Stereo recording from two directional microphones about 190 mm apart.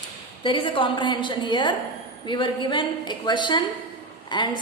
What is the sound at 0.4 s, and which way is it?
A woman's voice, 25° left (ahead or behind).